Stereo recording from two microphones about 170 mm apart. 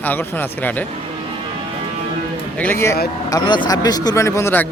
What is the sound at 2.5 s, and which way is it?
Speech, 10° left (ahead or behind).